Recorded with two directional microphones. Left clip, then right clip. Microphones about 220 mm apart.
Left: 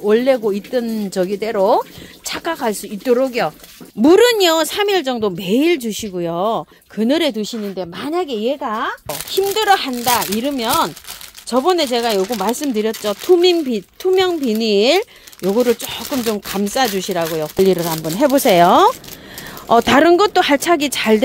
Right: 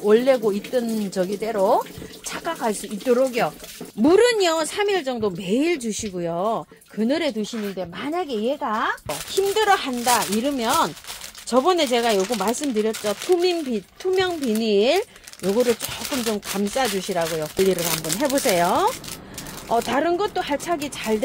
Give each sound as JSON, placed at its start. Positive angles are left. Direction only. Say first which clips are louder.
{"t": 0.0, "sound": "speech", "louder": "left 3 dB", "side_deg": 30}
{"t": 9.0, "sound": "speech", "louder": "left 4 dB", "side_deg": 40}